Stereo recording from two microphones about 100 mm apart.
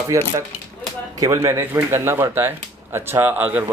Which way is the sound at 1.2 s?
30° right (ahead or behind).